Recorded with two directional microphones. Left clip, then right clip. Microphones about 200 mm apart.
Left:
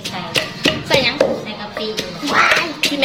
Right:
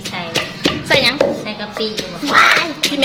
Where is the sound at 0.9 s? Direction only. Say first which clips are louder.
Right 3 dB; 10° right (ahead or behind).